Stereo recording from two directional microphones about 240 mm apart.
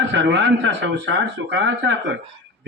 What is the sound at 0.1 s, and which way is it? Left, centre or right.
Speech, right.